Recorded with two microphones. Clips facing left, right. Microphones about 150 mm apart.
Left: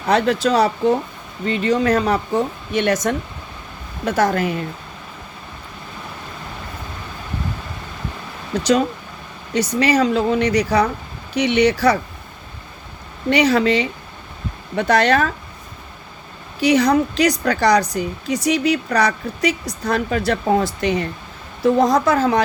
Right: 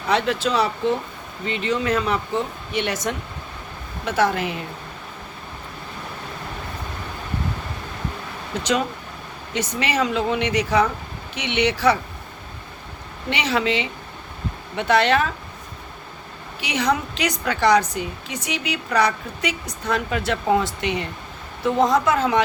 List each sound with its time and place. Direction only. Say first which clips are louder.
0.1 s a woman's voice: left 5 dB; 40° left (ahead or behind)
8.5 s a woman's voice: left 6 dB; 35° left (ahead or behind)
13.3 s a woman's voice: left 7 dB; 40° left (ahead or behind)
16.6 s a woman's voice: left 8 dB; 40° left (ahead or behind)